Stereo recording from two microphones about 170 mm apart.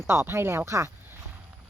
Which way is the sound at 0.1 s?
15° right (ahead or behind).